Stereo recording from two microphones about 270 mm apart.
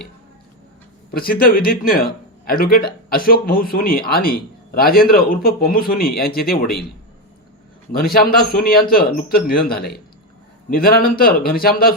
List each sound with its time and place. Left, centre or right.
1.1 s a man's voice: left
7.9 s a man's voice: left